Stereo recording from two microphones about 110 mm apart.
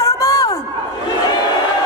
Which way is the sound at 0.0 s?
30° left (ahead or behind).